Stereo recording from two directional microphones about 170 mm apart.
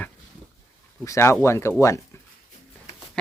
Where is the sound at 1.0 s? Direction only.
15° left (ahead or behind).